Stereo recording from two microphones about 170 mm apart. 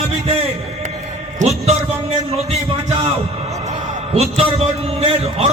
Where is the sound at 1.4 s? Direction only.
45° right (ahead or behind).